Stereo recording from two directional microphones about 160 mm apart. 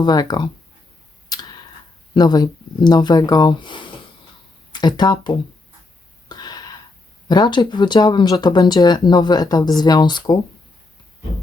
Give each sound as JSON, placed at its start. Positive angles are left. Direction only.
{"t": 0.0, "sound": "speech", "side_deg": 25}
{"t": 1.3, "sound": "tick", "side_deg": 25}
{"t": 2.1, "sound": "speech", "side_deg": 25}
{"t": 6.2, "sound": "a sound", "side_deg": 25}
{"t": 7.3, "sound": "speech", "side_deg": 25}